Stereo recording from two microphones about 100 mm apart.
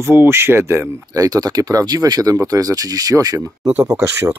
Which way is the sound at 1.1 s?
40° right (ahead or behind).